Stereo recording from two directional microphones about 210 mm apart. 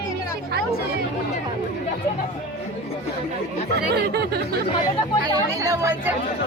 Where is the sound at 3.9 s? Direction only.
50° right (ahead or behind).